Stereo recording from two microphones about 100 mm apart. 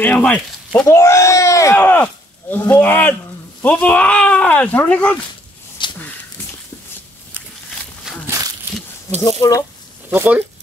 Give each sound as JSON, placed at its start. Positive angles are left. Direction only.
{"t": 0.0, "sound": "speech", "side_deg": 15}
{"t": 0.8, "sound": "speech", "side_deg": 30}
{"t": 1.8, "sound": "speech", "side_deg": 20}
{"t": 5.8, "sound": "a sound", "side_deg": 50}
{"t": 8.3, "sound": "a sound", "side_deg": -35}
{"t": 9.1, "sound": "speech", "side_deg": 35}
{"t": 10.0, "sound": "speech", "side_deg": -15}